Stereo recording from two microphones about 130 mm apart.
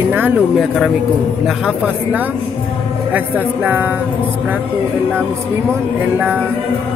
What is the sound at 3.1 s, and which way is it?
Speech, 15° right (ahead or behind).